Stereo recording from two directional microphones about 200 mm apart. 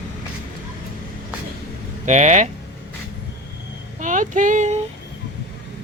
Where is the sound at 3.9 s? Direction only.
40° right (ahead or behind).